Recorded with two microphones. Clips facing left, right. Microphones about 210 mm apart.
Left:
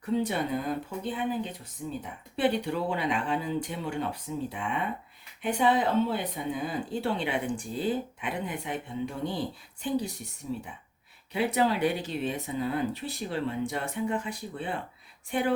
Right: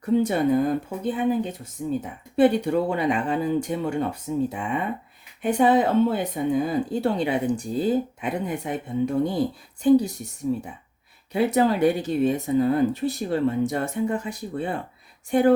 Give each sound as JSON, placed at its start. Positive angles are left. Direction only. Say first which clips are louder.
{"t": 0.0, "sound": "speech", "louder": "right 8 dB", "side_deg": -45}
{"t": 10.5, "sound": "speech", "louder": "right 9 dB", "side_deg": -50}